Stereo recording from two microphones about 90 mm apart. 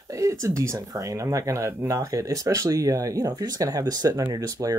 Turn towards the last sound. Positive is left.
turn(degrees=-40)  # may be behind; listen again after turning